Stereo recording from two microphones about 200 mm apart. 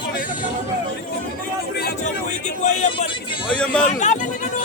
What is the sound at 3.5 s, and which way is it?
Speech, 5° left (ahead or behind).